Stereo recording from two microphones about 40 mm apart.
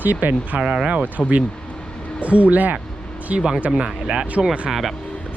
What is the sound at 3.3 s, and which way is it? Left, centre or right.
Speech, right.